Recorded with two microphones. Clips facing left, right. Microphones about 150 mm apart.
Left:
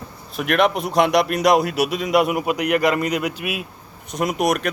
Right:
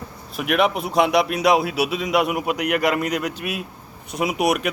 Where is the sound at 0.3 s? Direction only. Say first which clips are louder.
Left 1 dB; 5° right (ahead or behind).